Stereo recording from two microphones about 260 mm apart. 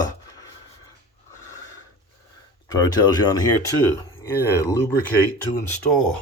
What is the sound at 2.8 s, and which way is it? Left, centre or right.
Speech, centre.